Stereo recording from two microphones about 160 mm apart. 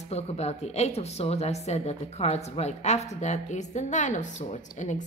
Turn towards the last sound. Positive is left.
turn(degrees=50)  # may be behind; listen again after turning